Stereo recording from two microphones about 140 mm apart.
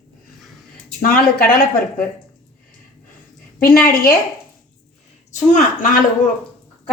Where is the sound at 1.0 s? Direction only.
90° left.